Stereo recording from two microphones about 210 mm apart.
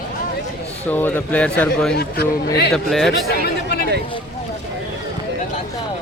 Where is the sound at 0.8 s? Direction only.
10° left (ahead or behind).